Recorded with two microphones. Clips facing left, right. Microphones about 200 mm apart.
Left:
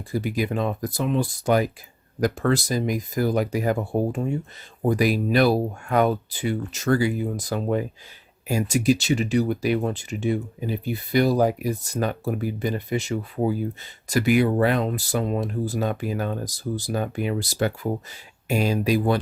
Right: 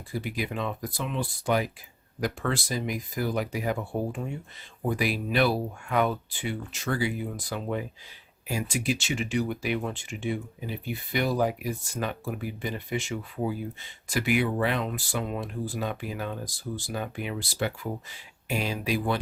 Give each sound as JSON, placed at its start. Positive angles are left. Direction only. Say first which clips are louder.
{"t": 0.1, "sound": "speech", "louder": "left 7 dB", "side_deg": 45}